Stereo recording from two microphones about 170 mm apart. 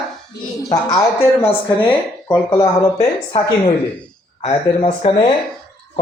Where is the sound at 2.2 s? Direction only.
20° left (ahead or behind).